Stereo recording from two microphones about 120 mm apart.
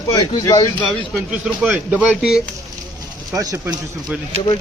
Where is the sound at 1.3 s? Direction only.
10° right (ahead or behind).